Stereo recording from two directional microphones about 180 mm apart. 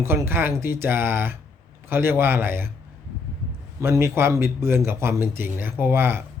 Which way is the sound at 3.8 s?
15° right (ahead or behind).